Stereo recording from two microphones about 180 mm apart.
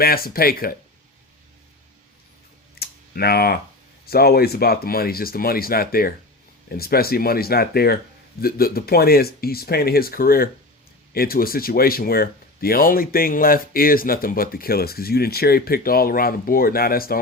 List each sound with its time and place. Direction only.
0.0 s speech: 55° left (ahead or behind)
2.7 s clicking: 60° left (ahead or behind)
4.0 s speech: 60° left (ahead or behind)